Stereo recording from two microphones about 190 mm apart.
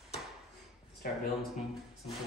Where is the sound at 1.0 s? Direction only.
50° left (ahead or behind).